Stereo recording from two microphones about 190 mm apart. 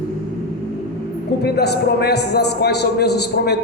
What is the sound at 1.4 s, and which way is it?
A man's voice, 60° left (ahead or behind).